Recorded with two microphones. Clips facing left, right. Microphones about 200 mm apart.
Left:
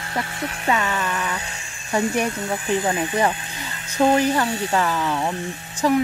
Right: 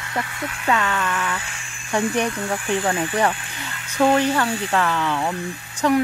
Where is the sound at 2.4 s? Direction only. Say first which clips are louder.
Even; 20° left (ahead or behind).